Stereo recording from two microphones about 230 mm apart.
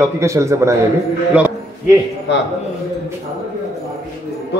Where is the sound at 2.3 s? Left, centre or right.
Left.